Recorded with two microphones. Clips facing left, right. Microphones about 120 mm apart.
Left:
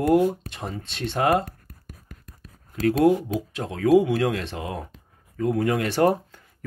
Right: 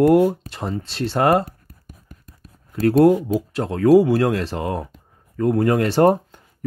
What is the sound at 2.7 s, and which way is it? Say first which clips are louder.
Speech: right 5 dB; 50° right (ahead or behind).